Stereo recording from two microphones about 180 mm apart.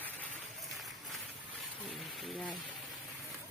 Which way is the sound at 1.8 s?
Centre (ahead or behind).